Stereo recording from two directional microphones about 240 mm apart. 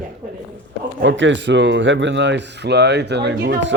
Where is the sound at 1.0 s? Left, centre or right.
Right.